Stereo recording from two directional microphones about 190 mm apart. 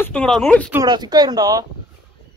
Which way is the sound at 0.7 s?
20° right (ahead or behind).